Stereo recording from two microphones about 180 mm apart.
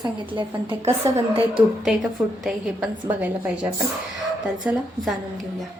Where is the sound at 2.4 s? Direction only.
Centre (ahead or behind).